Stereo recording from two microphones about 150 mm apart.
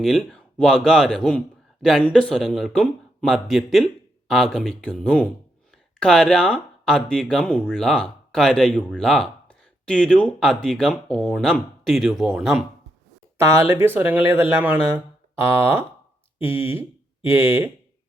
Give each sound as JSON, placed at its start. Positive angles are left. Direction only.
{"t": 0.0, "sound": "speech", "side_deg": 0}
{"t": 13.4, "sound": "speech", "side_deg": -20}